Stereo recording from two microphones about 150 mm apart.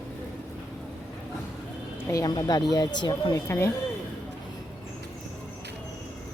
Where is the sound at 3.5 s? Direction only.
20° left (ahead or behind).